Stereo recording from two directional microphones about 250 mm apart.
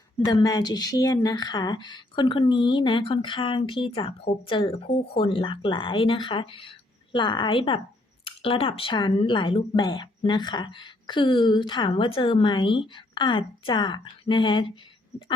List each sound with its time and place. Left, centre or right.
0.3 s speech: centre